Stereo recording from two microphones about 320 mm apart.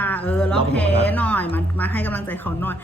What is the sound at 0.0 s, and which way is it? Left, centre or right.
Speech, centre.